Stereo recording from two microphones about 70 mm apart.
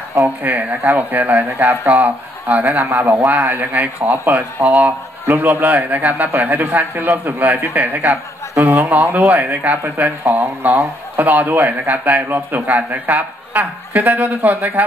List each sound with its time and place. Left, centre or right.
0.4 s speech: right
5.2 s speech: right
8.1 s a man's voice: right
8.8 s speech: right